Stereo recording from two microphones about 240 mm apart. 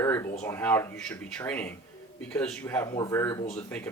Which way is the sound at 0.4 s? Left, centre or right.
Centre.